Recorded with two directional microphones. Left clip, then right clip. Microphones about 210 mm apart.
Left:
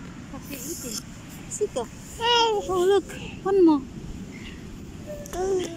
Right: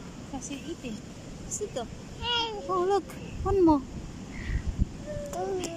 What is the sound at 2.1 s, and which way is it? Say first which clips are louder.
Speech: left 9 dB; 20° left (ahead or behind).